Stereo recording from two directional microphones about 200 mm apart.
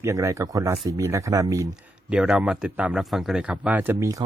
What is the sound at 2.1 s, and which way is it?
Speech, 5° right (ahead or behind).